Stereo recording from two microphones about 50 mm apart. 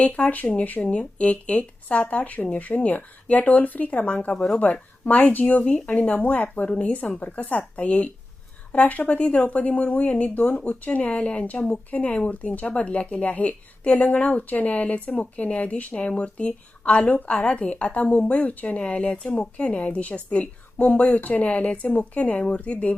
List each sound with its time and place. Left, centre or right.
0.0 s speech: left
0.8 s a woman's voice: left